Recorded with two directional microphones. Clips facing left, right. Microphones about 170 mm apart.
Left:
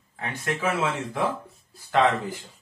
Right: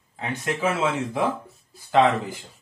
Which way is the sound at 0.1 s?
20° right (ahead or behind).